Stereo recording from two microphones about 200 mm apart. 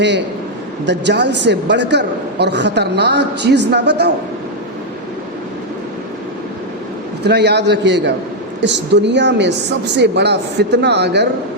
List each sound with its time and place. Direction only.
0.9 s a man's voice: 60° right (ahead or behind)
7.3 s a man's voice: 55° right (ahead or behind)